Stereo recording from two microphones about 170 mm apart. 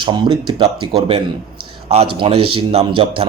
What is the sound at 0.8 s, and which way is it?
Speech, 30° right (ahead or behind).